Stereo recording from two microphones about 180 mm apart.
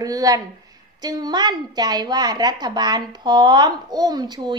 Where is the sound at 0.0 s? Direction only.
20° right (ahead or behind).